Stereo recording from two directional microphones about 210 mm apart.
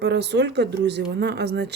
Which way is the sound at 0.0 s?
55° right (ahead or behind).